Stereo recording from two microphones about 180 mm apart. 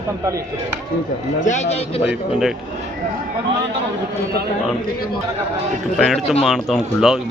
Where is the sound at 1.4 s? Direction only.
40° left (ahead or behind).